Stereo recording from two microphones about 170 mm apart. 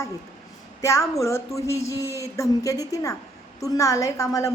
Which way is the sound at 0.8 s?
15° left (ahead or behind).